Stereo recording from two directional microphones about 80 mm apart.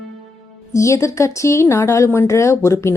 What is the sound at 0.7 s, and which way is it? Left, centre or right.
Speech, left.